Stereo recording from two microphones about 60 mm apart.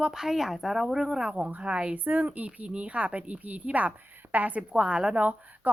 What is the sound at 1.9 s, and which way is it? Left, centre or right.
Speech, right.